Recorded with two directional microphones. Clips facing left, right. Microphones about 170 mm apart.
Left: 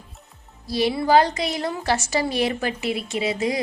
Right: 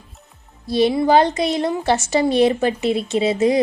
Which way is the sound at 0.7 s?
25° right (ahead or behind).